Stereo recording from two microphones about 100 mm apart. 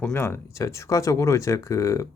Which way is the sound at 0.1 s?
25° left (ahead or behind).